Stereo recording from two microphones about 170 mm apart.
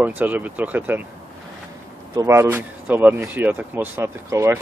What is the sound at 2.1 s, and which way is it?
Speech, 15° right (ahead or behind).